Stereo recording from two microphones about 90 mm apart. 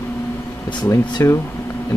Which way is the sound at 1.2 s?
35° left (ahead or behind).